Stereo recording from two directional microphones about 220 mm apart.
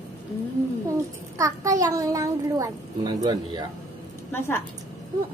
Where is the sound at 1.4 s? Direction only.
15° right (ahead or behind).